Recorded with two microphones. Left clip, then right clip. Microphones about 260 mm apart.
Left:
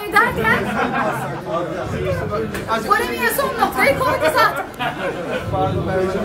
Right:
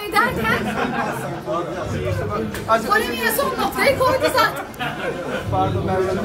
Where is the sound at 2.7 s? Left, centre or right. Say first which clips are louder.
Right 1 dB; centre.